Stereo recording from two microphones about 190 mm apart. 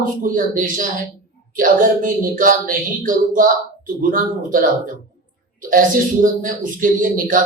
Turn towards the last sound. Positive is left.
turn(degrees=-45)  # may be behind; listen again after turning